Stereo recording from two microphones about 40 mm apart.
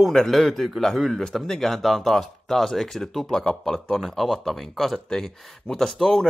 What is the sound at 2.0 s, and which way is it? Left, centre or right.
Speech, centre.